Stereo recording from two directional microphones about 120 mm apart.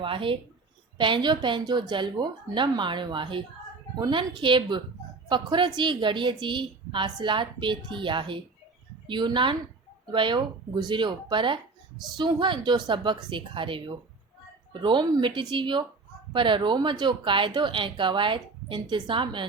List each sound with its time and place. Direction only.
0.0 s a woman's voice: 45° right (ahead or behind)